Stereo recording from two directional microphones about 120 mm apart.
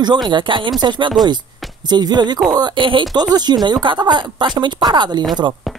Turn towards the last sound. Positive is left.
turn(degrees=-40)  # may be behind; listen again after turning